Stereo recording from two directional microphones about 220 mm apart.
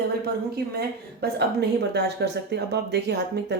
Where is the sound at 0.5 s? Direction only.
45° right (ahead or behind).